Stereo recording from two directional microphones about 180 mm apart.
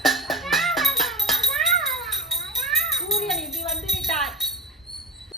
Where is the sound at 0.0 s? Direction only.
Centre (ahead or behind).